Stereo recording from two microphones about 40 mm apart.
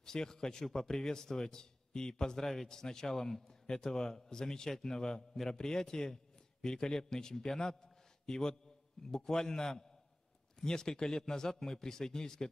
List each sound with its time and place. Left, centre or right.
0.0 s a man's voice: centre